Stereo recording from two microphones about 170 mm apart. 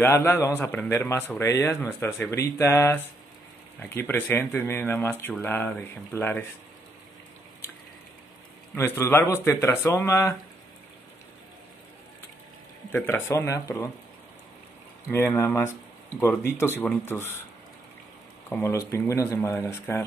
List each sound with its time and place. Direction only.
0.0 s a man's voice: 15° left (ahead or behind)
8.7 s a man's voice: 15° left (ahead or behind)
12.9 s a man's voice: 15° left (ahead or behind)
15.0 s a man's voice: 15° left (ahead or behind)
18.5 s a man's voice: 15° left (ahead or behind)